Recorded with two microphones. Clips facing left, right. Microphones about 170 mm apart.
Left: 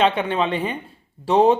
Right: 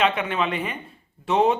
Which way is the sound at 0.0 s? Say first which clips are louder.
Left 3 dB; 30° left (ahead or behind).